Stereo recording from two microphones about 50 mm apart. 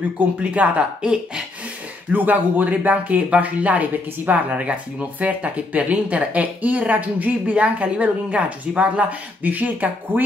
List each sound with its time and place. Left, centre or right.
0.4 s speech: right
1.0 s speech: centre
2.1 s speech: right